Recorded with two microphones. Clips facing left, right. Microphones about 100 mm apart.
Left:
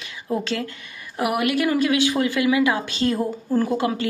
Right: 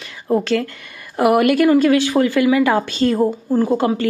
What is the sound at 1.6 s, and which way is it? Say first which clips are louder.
A woman's voice: right 6 dB; 35° right (ahead or behind).